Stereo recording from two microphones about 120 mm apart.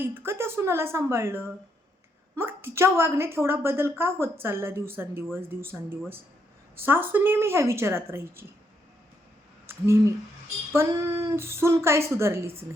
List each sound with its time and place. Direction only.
0.0 s a woman's voice: 15° right (ahead or behind)
9.6 s a sound: 25° right (ahead or behind)
10.7 s a woman's voice: 20° right (ahead or behind)